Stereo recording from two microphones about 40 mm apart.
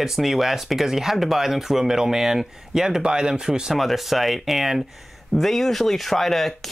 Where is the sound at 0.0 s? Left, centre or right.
Centre.